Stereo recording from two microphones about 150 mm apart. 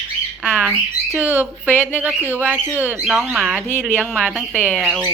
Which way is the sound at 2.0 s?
10° right (ahead or behind).